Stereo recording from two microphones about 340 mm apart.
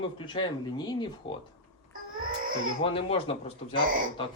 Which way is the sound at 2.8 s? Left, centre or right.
Centre.